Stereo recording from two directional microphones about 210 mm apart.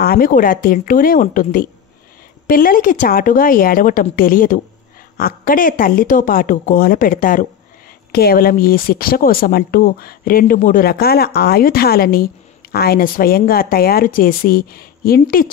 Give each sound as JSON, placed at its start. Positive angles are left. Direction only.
{"t": 0.0, "sound": "speech", "side_deg": 45}